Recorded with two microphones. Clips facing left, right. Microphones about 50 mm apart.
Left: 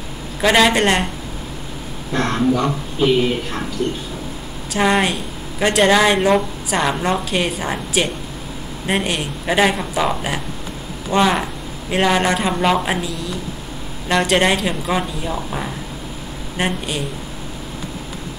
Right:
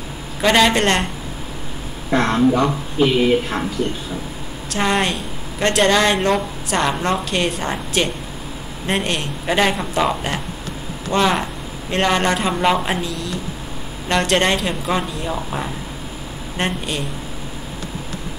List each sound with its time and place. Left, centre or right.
0.4 s speech: centre
2.1 s speech: centre
4.7 s speech: centre